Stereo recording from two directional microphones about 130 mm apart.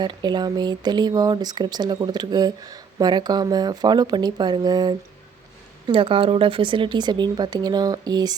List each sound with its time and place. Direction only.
0.0 s speech: 35° right (ahead or behind)
5.9 s speech: 45° right (ahead or behind)